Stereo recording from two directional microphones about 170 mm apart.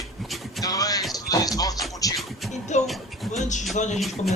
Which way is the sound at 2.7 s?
45° left (ahead or behind).